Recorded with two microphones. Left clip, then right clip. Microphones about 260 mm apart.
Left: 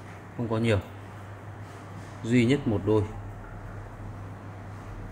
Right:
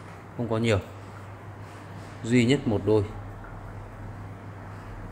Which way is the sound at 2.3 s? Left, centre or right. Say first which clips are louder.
Right 1 dB; centre.